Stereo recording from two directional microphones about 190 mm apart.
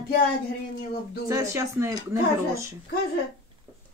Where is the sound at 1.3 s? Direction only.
15° right (ahead or behind).